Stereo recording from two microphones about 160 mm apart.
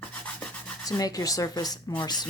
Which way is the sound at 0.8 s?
20° left (ahead or behind).